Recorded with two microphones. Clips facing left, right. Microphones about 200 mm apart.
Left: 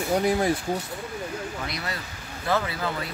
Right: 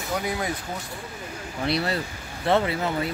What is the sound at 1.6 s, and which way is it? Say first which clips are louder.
Speech: right 8 dB; 30° right (ahead or behind).